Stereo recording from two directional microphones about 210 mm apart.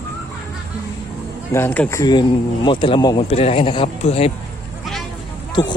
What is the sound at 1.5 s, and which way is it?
Speech, 10° left (ahead or behind).